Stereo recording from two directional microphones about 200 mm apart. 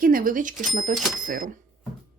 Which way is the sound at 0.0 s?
45° right (ahead or behind).